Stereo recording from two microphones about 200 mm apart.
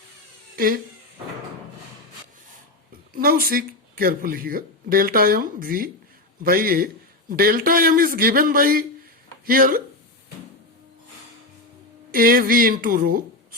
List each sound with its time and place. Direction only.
0.5 s speech: 45° right (ahead or behind)
3.1 s speech: 45° right (ahead or behind)
12.1 s speech: 45° right (ahead or behind)